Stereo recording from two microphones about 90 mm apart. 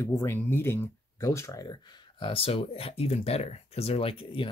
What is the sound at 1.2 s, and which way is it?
Speech, 35° left (ahead or behind).